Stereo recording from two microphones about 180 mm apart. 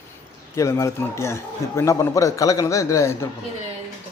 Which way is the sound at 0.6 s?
15° left (ahead or behind).